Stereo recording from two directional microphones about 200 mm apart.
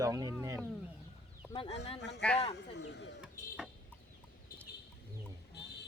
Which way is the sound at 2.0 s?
60° left (ahead or behind).